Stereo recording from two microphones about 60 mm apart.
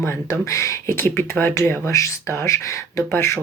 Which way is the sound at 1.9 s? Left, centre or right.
Left.